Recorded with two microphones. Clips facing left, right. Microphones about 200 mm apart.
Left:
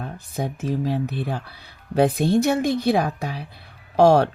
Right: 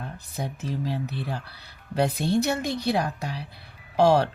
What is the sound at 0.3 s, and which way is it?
Speech, 55° left (ahead or behind).